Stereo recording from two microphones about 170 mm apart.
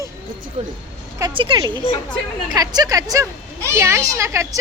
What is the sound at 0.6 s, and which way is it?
Speech, 40° right (ahead or behind).